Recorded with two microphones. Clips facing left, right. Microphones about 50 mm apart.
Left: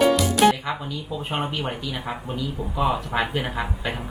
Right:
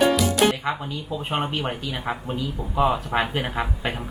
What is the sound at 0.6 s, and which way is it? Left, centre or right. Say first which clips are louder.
A man's voice: right 2 dB; centre.